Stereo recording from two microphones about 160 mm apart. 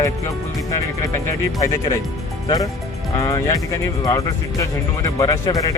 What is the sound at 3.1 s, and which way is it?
Speech, 20° left (ahead or behind).